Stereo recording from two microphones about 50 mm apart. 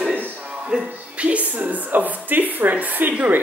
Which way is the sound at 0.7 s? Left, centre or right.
Centre.